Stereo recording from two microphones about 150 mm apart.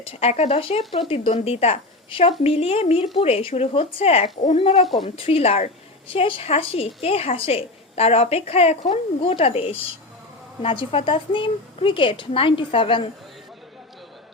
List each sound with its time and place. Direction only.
0.0 s a woman's voice: 40° left (ahead or behind)